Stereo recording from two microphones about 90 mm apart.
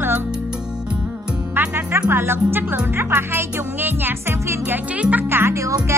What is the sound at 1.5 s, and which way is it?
Music, 20° right (ahead or behind).